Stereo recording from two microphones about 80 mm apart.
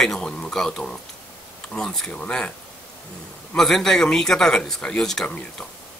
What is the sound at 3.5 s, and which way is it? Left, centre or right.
Speech, centre.